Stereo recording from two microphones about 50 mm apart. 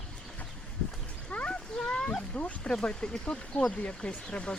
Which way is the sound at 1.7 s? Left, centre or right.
Centre.